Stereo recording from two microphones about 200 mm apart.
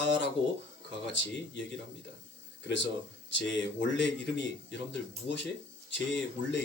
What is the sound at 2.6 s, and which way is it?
Speech, 60° left (ahead or behind).